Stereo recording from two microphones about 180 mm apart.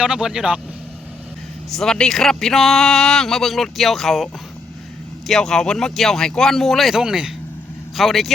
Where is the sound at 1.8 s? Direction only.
5° left (ahead or behind).